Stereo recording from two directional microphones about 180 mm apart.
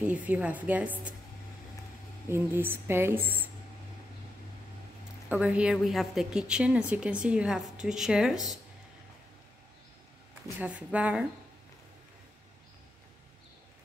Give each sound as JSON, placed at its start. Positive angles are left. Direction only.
{"t": 0.0, "sound": "speech", "side_deg": -10}
{"t": 2.2, "sound": "speech", "side_deg": -15}
{"t": 5.3, "sound": "a woman's voice", "side_deg": -5}
{"t": 10.6, "sound": "speech", "side_deg": -10}